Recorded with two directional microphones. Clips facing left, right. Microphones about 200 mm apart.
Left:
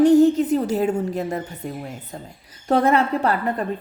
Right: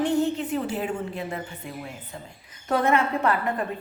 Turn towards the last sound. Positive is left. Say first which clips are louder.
# left 3 dB
turn(degrees=35)  # may be behind; listen again after turning